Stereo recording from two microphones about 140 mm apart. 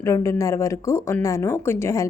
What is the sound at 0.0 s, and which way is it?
Speech, 20° left (ahead or behind).